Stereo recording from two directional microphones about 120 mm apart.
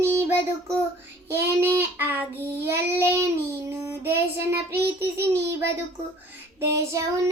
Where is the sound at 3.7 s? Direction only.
20° right (ahead or behind).